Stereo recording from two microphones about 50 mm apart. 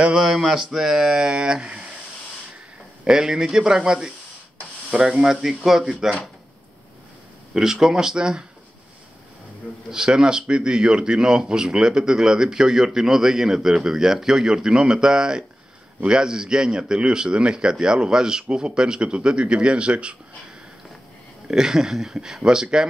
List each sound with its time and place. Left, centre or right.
0.0 s speech: centre
3.1 s speech: centre
7.5 s speech: centre
9.8 s speech: centre
21.5 s speech: centre